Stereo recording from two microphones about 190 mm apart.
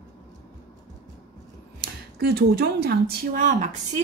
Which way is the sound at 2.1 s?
55° right (ahead or behind).